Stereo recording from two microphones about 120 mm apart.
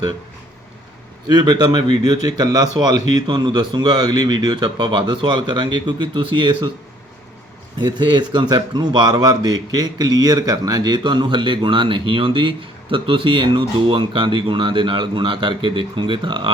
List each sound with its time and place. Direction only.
1.3 s speech: 35° right (ahead or behind)
7.8 s speech: 35° right (ahead or behind)